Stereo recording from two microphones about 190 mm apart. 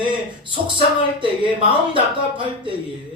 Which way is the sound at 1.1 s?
25° right (ahead or behind).